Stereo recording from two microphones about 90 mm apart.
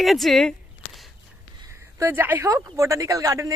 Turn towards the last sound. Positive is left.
turn(degrees=-35)  # may be behind; listen again after turning